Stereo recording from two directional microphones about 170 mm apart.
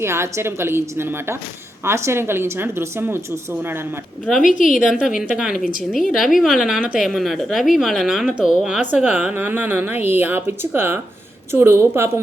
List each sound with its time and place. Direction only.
0.0 s a woman's voice: 15° right (ahead or behind)
4.4 s a woman's voice: 50° left (ahead or behind)
4.9 s a woman's voice: 5° right (ahead or behind)